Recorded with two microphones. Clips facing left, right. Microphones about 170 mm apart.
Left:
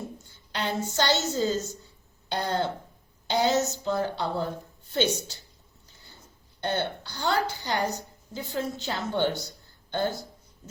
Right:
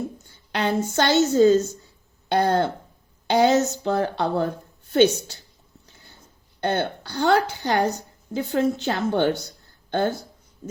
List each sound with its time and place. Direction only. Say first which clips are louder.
0.3 s a woman's voice: right 7 dB; 60° right (ahead or behind)
6.6 s a woman's voice: right 5 dB; 60° right (ahead or behind)